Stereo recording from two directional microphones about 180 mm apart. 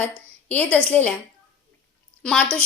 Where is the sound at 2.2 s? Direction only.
5° left (ahead or behind).